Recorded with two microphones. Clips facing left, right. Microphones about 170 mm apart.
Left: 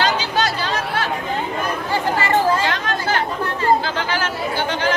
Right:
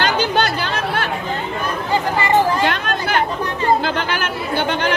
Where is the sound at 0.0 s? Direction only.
60° right (ahead or behind).